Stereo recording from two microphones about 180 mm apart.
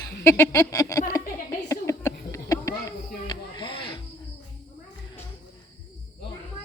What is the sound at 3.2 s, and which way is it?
Music, 25° left (ahead or behind).